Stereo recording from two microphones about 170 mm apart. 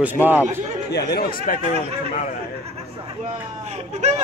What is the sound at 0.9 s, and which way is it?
Speech, 65° left (ahead or behind).